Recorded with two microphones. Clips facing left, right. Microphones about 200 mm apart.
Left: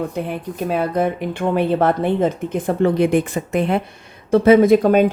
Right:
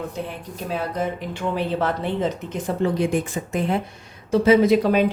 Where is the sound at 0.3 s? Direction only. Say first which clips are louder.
Left 7 dB; 60° left (ahead or behind).